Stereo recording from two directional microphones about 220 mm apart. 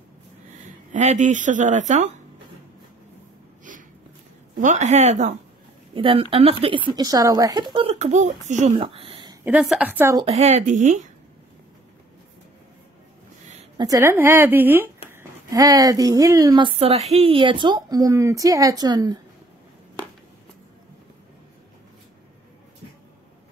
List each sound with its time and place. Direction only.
0.6 s speech: 35° right (ahead or behind)
4.6 s speech: 35° right (ahead or behind)
8.7 s a sound: 25° right (ahead or behind)
9.4 s a woman's voice: 5° right (ahead or behind)
10.2 s speech: 30° right (ahead or behind)
13.7 s a woman's voice: 15° right (ahead or behind)